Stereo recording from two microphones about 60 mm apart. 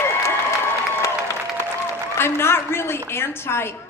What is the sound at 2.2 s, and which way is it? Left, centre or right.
A woman's voice, left.